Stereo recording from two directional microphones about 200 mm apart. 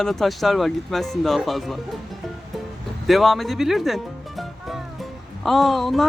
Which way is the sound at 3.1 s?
Centre (ahead or behind).